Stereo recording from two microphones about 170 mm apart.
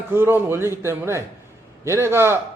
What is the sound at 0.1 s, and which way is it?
A man's voice, 15° right (ahead or behind).